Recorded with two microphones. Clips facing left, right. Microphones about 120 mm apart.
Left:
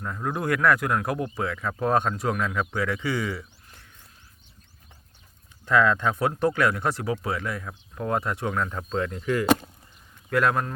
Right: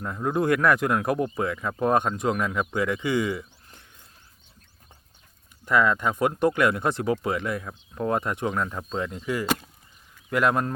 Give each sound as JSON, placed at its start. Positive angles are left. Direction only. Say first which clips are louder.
{"t": 0.0, "sound": "speech", "louder": "right 4 dB", "side_deg": -20}
{"t": 5.6, "sound": "speech", "louder": "left 1 dB", "side_deg": -10}